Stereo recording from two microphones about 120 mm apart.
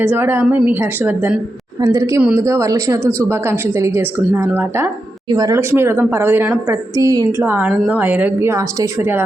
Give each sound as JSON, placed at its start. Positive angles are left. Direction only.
{"t": 0.0, "sound": "a woman's voice", "side_deg": -15}
{"t": 1.8, "sound": "speech", "side_deg": -30}
{"t": 7.0, "sound": "a woman's voice", "side_deg": -30}
{"t": 7.3, "sound": "a woman's voice", "side_deg": -20}